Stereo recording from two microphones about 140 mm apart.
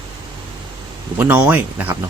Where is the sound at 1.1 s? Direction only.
10° right (ahead or behind).